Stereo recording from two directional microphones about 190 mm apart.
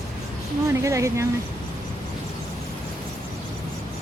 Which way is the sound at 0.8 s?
15° right (ahead or behind).